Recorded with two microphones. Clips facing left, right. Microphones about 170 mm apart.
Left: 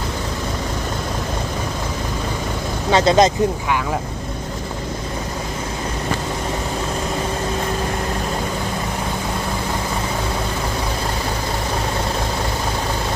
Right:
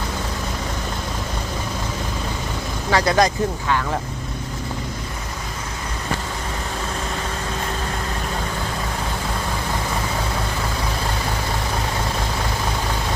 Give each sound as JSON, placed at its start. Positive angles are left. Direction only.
{"t": 2.9, "sound": "speech", "side_deg": 20}